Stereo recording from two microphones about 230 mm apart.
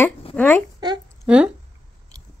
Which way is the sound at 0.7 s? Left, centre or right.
Centre.